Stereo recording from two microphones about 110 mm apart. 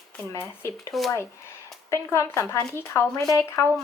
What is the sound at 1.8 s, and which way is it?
Speech, 25° left (ahead or behind).